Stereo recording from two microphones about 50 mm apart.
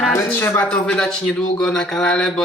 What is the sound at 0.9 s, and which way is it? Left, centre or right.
Speech, centre.